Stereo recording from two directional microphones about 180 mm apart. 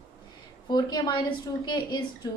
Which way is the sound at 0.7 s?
20° left (ahead or behind).